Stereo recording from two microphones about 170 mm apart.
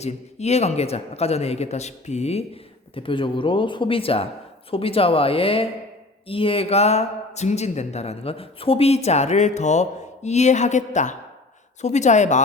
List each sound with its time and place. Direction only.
0.0 s a woman's voice: 40° left (ahead or behind)